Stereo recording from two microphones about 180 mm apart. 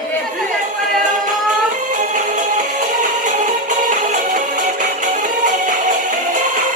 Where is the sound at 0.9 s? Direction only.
45° right (ahead or behind).